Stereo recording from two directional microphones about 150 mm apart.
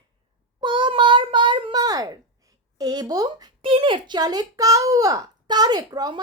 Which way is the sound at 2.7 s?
25° right (ahead or behind).